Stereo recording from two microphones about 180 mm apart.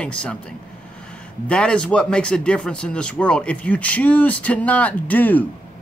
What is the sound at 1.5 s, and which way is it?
Speech, 5° left (ahead or behind).